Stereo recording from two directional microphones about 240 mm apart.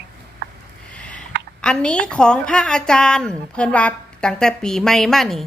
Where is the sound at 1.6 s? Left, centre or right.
Centre.